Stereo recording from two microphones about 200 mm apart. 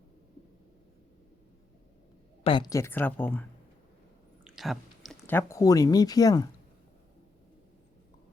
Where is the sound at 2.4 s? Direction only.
25° left (ahead or behind).